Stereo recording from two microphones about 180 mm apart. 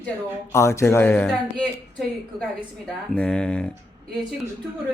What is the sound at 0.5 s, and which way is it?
Speech, 15° left (ahead or behind).